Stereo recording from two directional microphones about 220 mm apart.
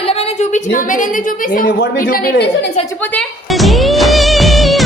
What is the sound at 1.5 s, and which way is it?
Speech, 40° left (ahead or behind).